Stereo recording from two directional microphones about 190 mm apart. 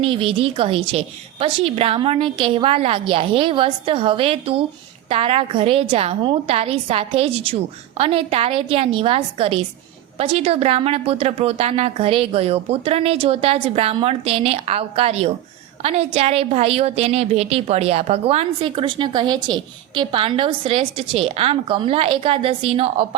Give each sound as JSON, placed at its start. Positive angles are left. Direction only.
{"t": 0.0, "sound": "a woman's voice", "side_deg": -30}